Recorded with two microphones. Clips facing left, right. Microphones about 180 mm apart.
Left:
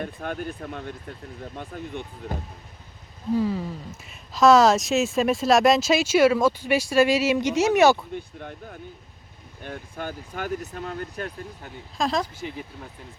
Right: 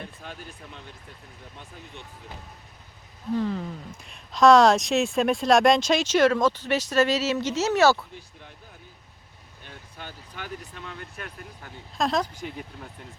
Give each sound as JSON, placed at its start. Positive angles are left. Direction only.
{"t": 0.0, "sound": "speech", "side_deg": 55}
{"t": 3.3, "sound": "speech", "side_deg": 5}
{"t": 8.1, "sound": "speech", "side_deg": 55}
{"t": 11.9, "sound": "speech", "side_deg": 0}